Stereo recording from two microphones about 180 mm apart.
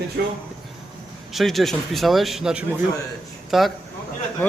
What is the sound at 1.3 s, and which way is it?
A man's voice, centre (ahead or behind).